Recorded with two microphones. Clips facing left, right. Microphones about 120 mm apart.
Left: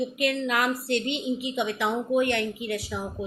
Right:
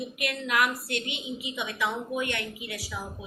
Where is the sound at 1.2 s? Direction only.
55° left (ahead or behind).